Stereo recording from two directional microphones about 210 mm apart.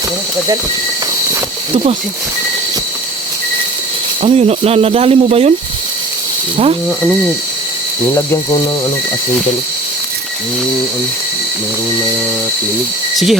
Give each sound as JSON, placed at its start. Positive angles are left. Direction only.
{"t": 1.7, "sound": "speech", "side_deg": -25}
{"t": 4.2, "sound": "speech", "side_deg": -30}
{"t": 8.1, "sound": "ratchet", "side_deg": 15}